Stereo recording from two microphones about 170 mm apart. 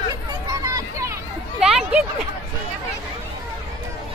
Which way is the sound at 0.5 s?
20° right (ahead or behind).